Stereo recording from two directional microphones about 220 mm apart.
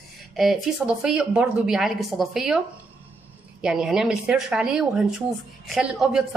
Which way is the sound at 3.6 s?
Centre (ahead or behind).